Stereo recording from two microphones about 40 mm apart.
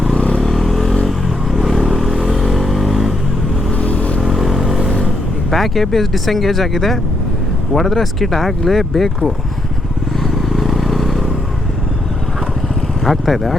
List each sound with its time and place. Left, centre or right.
0.1 s vehicle: centre
0.4 s vehicle: centre
3.7 s vehicle: left
4.2 s vehicle: centre
5.5 s speech: centre
10.5 s vehicle: centre
13.1 s speech: centre